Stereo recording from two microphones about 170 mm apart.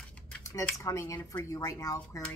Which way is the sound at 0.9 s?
20° left (ahead or behind).